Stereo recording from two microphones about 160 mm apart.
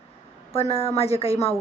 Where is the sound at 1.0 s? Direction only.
40° left (ahead or behind).